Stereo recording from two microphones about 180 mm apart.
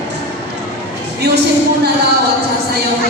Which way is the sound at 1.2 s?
70° right (ahead or behind).